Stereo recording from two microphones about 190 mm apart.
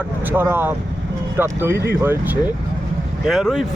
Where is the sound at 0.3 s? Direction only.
10° right (ahead or behind).